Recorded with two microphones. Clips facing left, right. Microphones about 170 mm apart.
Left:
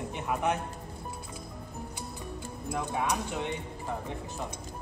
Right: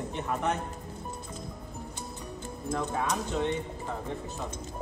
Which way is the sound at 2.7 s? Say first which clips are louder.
Right 1 dB; 15° left (ahead or behind).